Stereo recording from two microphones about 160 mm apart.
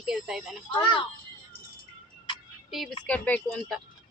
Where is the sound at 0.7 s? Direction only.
30° left (ahead or behind).